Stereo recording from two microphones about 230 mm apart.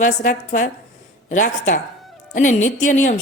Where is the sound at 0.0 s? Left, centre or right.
Left.